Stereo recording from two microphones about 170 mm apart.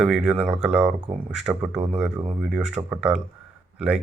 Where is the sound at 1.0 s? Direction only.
30° right (ahead or behind).